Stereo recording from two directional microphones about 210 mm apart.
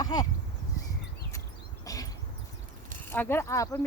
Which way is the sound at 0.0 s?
20° left (ahead or behind).